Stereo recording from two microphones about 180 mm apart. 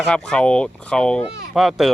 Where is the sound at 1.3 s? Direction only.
65° right (ahead or behind).